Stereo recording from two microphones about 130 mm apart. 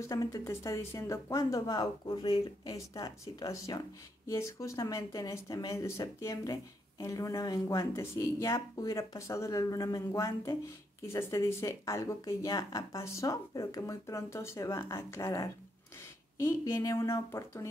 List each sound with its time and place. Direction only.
0.0 s speech: 25° left (ahead or behind)